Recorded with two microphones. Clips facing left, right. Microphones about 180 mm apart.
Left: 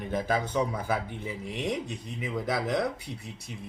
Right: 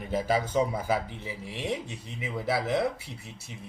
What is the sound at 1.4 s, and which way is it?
Speech, 55° left (ahead or behind).